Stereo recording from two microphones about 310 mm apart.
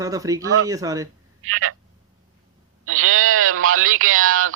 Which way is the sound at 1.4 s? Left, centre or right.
Right.